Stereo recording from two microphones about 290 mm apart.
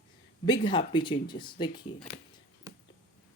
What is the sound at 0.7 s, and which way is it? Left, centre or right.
Speech, centre.